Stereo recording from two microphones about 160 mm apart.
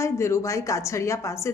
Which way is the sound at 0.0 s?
15° left (ahead or behind).